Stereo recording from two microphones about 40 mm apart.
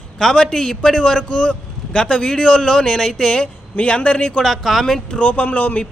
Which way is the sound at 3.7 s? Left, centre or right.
Left.